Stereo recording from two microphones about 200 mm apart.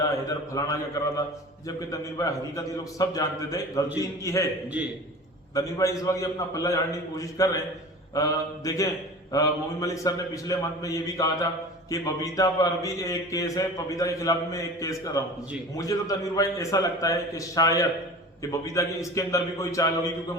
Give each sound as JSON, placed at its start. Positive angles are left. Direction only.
{"t": 0.5, "sound": "a man's voice", "side_deg": 15}
{"t": 5.5, "sound": "a man's voice", "side_deg": 15}